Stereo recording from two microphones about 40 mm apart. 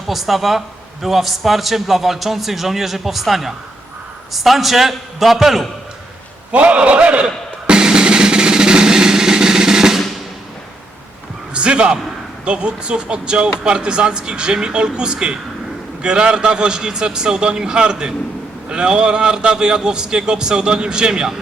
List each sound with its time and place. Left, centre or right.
0.1 s a man's voice: centre
6.5 s a man's voice: right
7.7 s drum: centre
11.5 s a man's voice: right